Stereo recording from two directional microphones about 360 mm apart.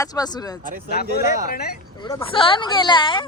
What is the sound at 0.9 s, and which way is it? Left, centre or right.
Speech, left.